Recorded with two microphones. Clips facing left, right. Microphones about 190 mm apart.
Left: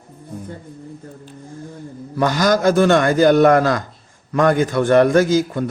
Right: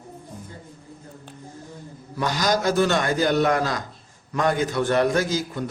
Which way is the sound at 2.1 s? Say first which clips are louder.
Left 6 dB; 55° left (ahead or behind).